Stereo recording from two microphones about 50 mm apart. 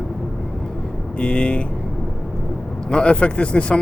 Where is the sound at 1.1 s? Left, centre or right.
Centre.